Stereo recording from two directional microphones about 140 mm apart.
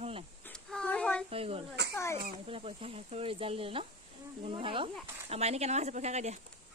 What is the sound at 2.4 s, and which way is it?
Speech, 40° right (ahead or behind).